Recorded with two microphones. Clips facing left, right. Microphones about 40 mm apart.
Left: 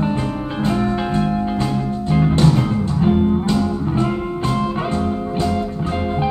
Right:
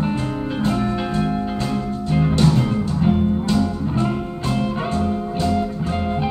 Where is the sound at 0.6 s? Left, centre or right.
Centre.